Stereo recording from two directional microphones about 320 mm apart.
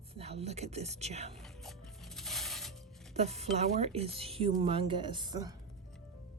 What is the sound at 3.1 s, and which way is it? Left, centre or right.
Speech, centre.